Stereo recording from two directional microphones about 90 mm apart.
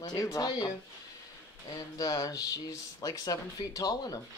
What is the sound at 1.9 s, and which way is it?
Speech, 40° left (ahead or behind).